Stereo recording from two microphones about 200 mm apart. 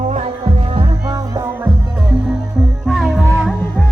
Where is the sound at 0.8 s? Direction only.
15° right (ahead or behind).